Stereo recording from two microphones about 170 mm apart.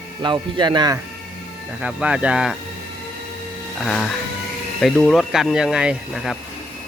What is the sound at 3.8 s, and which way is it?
Speech, 5° left (ahead or behind).